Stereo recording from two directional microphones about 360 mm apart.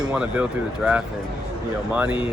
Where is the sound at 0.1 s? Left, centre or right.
Centre.